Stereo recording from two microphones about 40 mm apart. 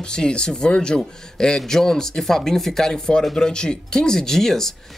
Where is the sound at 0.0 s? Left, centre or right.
Left.